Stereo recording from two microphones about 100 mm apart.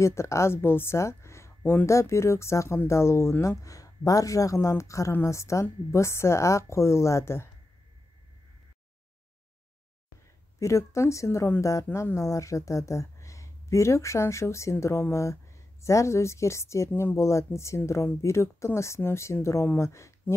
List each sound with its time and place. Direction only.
0.0 s speech: 30° left (ahead or behind)
10.6 s speech: 30° left (ahead or behind)